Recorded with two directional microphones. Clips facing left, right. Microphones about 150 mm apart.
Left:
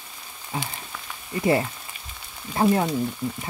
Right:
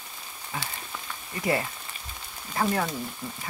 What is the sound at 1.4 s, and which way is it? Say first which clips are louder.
Speech: left 5 dB; 30° left (ahead or behind).